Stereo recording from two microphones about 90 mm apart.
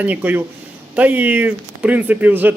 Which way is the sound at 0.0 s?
20° right (ahead or behind).